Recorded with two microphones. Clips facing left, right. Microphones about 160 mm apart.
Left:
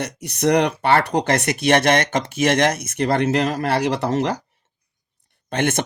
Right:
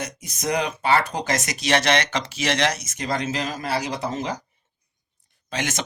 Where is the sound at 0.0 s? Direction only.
65° left (ahead or behind).